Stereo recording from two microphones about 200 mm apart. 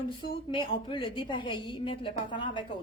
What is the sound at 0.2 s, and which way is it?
A woman's voice, 25° left (ahead or behind).